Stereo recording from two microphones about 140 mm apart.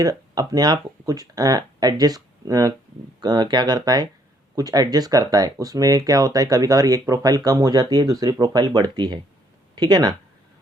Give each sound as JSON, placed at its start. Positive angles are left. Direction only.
{"t": 0.0, "sound": "speech", "side_deg": -25}